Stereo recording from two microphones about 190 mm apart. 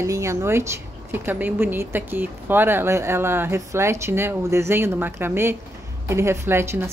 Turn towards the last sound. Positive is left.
turn(degrees=-15)  # may be behind; listen again after turning